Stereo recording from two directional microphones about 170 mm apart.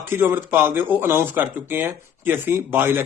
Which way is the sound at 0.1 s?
15° right (ahead or behind).